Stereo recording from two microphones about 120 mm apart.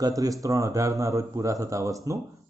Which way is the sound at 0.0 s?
30° right (ahead or behind).